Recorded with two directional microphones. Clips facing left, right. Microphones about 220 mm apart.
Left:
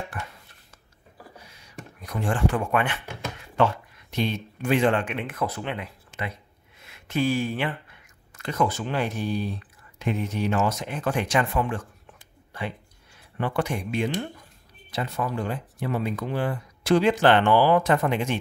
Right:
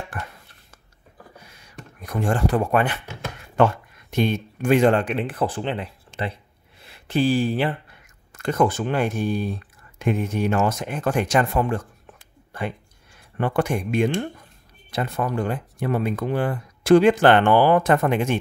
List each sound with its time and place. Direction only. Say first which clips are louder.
2.0 s speech: right 4 dB; 45° right (ahead or behind)
3.5 s speech: right 4 dB; 50° right (ahead or behind); by 6.3 s 30° right (ahead or behind)
6.8 s a sound: right 4 dB; 30° right (ahead or behind)
8.3 s speech: right 5 dB; 50° right (ahead or behind)
13.4 s speech: right 4 dB; 50° right (ahead or behind)